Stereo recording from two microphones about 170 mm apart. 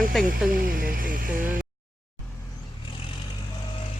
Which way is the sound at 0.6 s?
55° right (ahead or behind).